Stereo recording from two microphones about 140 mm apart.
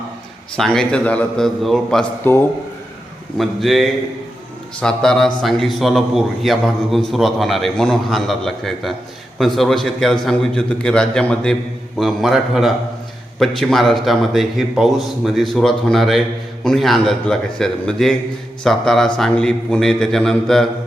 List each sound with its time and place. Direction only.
0.5 s a man's voice: 5° left (ahead or behind)
2.3 s a man's voice: 15° left (ahead or behind)
3.3 s a man's voice: centre (ahead or behind)